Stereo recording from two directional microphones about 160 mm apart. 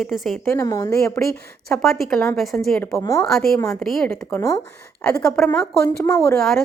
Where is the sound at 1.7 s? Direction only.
Centre (ahead or behind).